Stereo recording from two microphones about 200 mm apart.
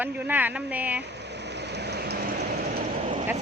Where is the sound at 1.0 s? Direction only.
60° right (ahead or behind).